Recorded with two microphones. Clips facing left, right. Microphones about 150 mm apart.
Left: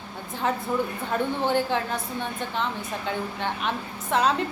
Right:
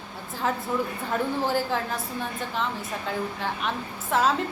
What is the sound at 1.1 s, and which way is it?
A woman's voice, centre (ahead or behind).